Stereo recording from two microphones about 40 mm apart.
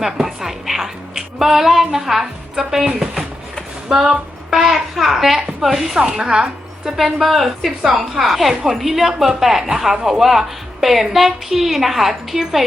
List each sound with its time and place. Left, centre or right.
0.0 s a woman's voice: centre
6.1 s a woman's voice: right
6.9 s a woman's voice: centre